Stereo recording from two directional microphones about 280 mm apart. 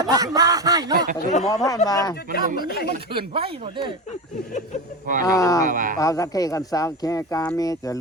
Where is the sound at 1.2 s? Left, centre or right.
Left.